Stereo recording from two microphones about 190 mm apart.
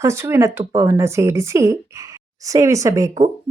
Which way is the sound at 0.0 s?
15° right (ahead or behind).